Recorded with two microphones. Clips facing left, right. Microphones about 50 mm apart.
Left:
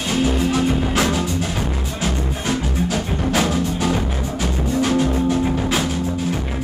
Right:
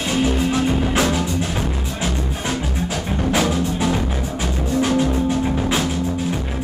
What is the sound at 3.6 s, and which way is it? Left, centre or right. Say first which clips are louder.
Music: even; centre.